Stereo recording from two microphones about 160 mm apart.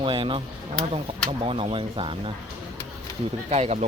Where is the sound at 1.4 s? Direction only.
35° right (ahead or behind).